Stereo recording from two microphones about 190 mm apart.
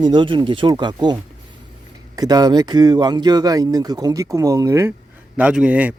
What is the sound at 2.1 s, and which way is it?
Speech, 20° right (ahead or behind).